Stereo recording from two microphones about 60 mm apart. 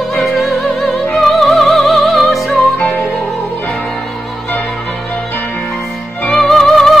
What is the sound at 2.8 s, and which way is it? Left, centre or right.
Music, left.